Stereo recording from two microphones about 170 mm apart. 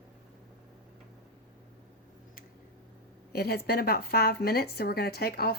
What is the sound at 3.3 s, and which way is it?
A woman's voice, 65° left (ahead or behind).